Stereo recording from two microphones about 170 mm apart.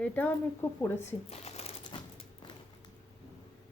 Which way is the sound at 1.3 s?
40° left (ahead or behind).